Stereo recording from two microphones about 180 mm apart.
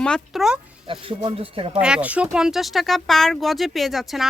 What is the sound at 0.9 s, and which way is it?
Speech, 30° right (ahead or behind).